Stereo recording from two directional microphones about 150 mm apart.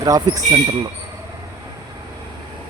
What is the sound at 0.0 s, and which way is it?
Speech, 25° right (ahead or behind).